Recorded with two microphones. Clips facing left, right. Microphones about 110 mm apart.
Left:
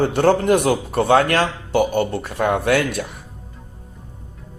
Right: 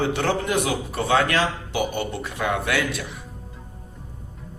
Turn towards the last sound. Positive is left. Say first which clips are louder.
# left 6 dB
turn(degrees=50)  # may be behind; listen again after turning